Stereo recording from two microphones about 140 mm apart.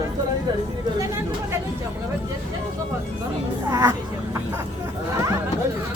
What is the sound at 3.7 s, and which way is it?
Speech, 25° right (ahead or behind).